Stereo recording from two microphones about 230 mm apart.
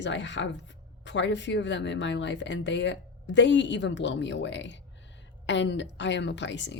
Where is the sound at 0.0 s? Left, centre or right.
Left.